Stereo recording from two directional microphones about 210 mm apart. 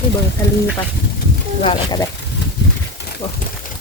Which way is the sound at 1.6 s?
20° left (ahead or behind).